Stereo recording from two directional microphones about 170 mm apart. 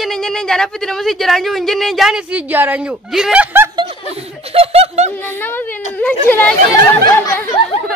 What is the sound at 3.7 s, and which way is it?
Chuckle, 25° right (ahead or behind).